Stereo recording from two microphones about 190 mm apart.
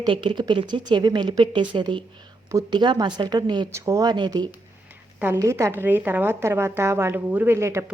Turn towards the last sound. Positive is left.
turn(degrees=-15)  # may be behind; listen again after turning